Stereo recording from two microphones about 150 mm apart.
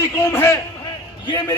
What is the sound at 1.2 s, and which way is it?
Speech, 30° left (ahead or behind).